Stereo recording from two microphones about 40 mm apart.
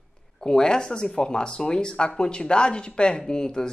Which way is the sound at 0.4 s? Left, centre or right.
Centre.